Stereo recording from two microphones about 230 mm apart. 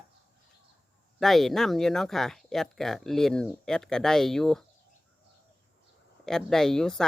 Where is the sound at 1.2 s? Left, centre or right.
Centre.